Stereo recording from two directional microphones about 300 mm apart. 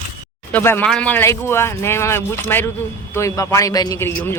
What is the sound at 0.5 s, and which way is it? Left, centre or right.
Speech, centre.